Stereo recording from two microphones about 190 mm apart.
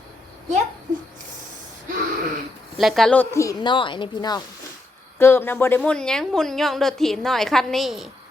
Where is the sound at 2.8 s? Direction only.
Centre (ahead or behind).